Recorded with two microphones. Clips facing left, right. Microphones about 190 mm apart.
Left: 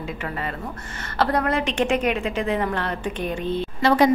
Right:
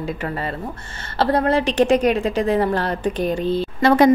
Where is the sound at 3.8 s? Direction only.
50° right (ahead or behind).